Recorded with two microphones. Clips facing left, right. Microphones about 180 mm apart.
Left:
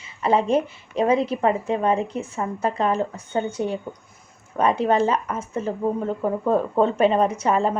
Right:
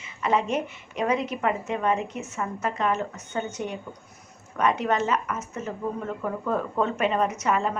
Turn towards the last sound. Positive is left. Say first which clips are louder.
# left 4 dB
turn(degrees=30)  # may be behind; listen again after turning